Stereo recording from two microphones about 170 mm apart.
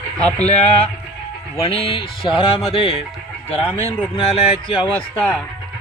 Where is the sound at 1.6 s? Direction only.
35° left (ahead or behind).